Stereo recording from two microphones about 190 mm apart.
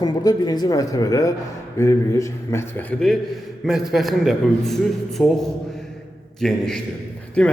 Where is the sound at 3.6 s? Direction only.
Centre (ahead or behind).